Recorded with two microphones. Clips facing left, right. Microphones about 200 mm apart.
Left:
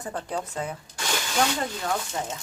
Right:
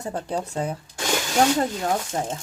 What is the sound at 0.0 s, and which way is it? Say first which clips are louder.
Speech: right 3 dB; 25° right (ahead or behind).